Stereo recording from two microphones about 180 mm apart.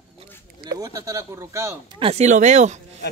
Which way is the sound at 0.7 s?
20° right (ahead or behind).